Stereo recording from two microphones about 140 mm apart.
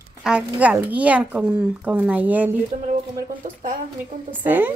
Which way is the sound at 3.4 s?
65° right (ahead or behind).